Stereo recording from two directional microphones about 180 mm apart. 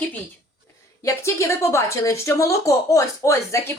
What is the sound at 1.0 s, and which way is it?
Speech, 15° left (ahead or behind).